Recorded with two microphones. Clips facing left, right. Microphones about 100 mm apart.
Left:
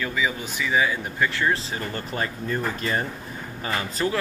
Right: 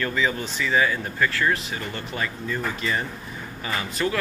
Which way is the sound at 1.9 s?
40° left (ahead or behind).